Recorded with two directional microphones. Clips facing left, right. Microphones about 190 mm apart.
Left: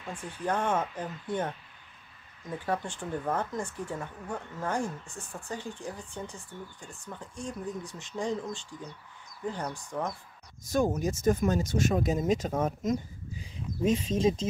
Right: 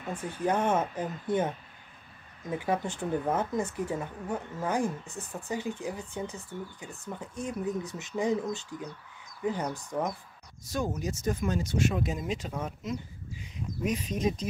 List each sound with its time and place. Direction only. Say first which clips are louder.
0.1 s speech: right 3 dB; 10° right (ahead or behind)
2.5 s speech: right 2 dB; 10° right (ahead or behind)
10.7 s speech: left 5 dB; 50° left (ahead or behind)
13.4 s speech: left 3 dB; 25° left (ahead or behind)